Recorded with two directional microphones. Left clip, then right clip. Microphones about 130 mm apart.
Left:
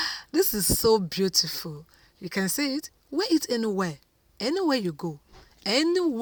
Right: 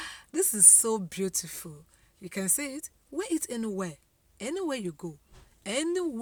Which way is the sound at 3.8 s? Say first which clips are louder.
Left 7 dB; 30° left (ahead or behind).